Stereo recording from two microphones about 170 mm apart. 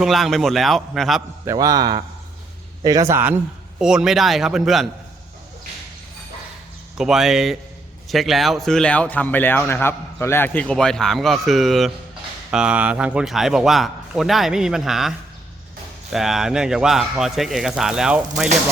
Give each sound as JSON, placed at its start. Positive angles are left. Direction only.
{"t": 0.0, "sound": "speech", "side_deg": 0}
{"t": 1.5, "sound": "a man's voice", "side_deg": -20}
{"t": 6.9, "sound": "speech", "side_deg": -5}